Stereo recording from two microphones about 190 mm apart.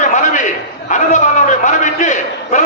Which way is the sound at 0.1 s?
40° left (ahead or behind).